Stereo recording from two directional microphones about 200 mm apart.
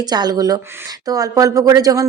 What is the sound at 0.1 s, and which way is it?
Speech, 20° right (ahead or behind).